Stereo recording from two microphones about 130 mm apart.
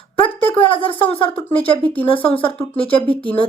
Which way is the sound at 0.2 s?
45° left (ahead or behind).